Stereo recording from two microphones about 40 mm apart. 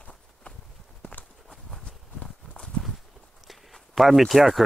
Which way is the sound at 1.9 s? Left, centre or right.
Left.